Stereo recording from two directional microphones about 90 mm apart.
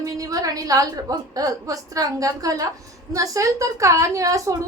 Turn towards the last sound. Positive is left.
turn(degrees=-35)  # may be behind; listen again after turning